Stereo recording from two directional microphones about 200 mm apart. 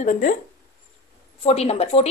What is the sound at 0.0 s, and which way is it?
Speech, 45° left (ahead or behind).